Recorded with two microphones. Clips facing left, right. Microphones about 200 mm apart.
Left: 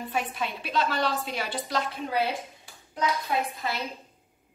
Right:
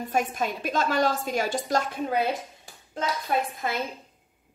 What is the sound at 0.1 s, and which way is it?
A woman's voice, 45° right (ahead or behind).